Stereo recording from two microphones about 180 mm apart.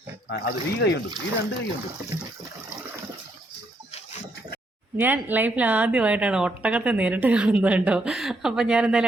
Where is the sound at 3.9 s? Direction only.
35° left (ahead or behind).